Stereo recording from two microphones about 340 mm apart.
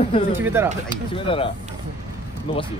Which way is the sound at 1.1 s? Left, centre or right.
Centre.